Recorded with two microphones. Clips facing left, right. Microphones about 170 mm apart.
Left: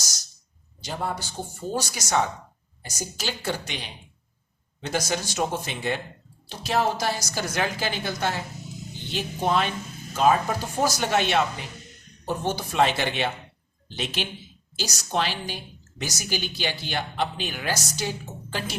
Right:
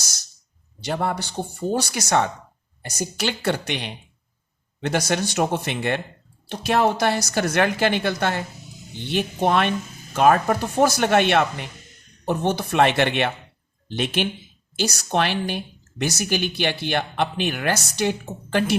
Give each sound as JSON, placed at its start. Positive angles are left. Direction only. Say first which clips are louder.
{"t": 0.8, "sound": "a woman's voice", "louder": "right 6 dB", "side_deg": -65}